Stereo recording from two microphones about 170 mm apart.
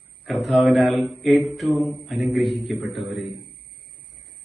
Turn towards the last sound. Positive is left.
turn(degrees=0)  # may be behind; listen again after turning